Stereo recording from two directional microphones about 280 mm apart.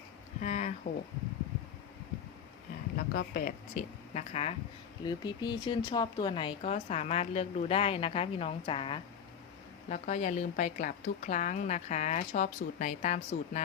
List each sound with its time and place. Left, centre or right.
0.4 s speech: left
3.1 s speech: left